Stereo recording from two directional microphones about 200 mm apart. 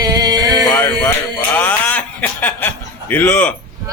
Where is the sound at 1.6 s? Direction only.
10° left (ahead or behind).